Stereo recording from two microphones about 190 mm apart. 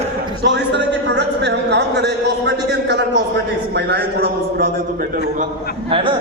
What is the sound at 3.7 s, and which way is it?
A man's voice, 60° right (ahead or behind).